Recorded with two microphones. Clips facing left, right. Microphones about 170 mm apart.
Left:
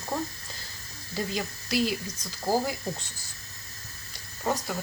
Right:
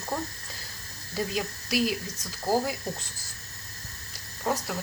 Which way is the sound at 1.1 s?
5° right (ahead or behind).